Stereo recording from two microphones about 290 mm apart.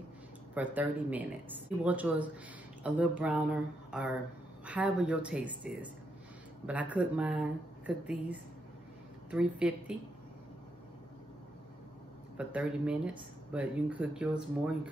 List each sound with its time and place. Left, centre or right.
0.6 s speech: centre
12.4 s speech: centre